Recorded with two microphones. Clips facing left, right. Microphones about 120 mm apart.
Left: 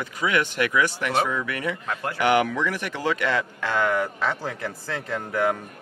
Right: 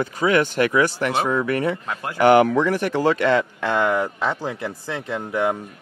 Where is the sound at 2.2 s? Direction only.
40° right (ahead or behind).